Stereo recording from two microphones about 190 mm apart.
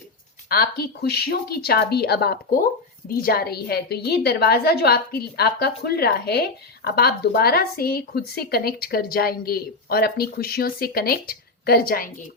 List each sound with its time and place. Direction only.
0.4 s a woman's voice: 55° left (ahead or behind)